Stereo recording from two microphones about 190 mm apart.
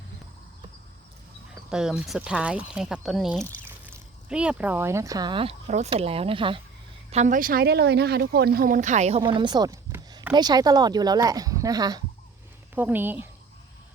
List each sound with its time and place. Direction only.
1.7 s speech: 5° right (ahead or behind); by 6.6 s 25° right (ahead or behind)
7.1 s speech: 40° right (ahead or behind); by 12.0 s 20° right (ahead or behind)
12.7 s speech: 10° right (ahead or behind)